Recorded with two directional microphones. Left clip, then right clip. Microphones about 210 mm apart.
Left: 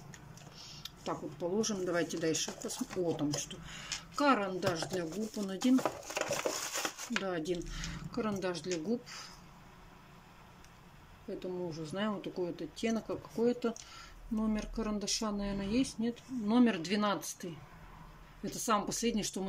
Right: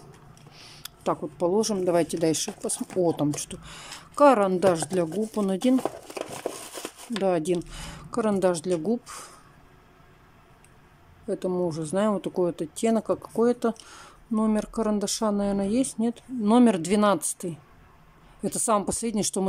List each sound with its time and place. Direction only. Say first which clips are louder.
0.7 s speech: right 12 dB; 30° right (ahead or behind)
7.2 s speech: right 12 dB; 30° right (ahead or behind)
11.2 s speech: right 13 dB; 30° right (ahead or behind)
18.7 s speech: right 7 dB; 30° right (ahead or behind)